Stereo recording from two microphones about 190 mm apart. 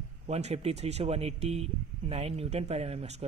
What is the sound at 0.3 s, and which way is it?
Speech, 35° right (ahead or behind).